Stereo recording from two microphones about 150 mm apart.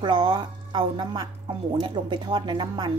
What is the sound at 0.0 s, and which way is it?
A woman's voice, 30° right (ahead or behind).